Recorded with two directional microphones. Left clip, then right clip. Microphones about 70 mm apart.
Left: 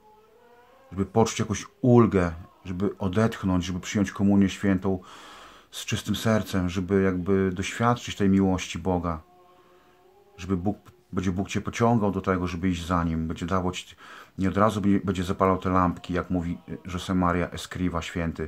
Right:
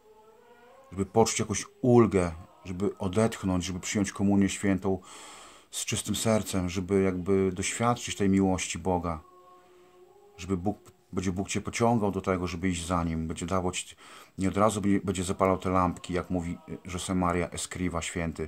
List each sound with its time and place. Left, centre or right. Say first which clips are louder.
0.9 s speech: left 1 dB; right
10.3 s speech: left 2 dB; right